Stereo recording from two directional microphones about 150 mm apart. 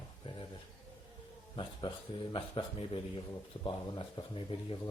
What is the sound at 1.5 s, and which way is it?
Speech, 30° left (ahead or behind).